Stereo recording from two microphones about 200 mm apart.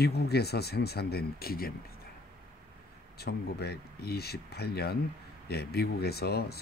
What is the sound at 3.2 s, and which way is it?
Speech, 50° left (ahead or behind).